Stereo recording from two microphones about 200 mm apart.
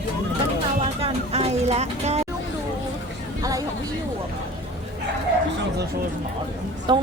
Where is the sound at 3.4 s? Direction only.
15° right (ahead or behind).